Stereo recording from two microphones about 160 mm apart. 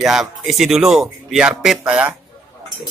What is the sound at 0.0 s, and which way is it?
Speech, centre (ahead or behind).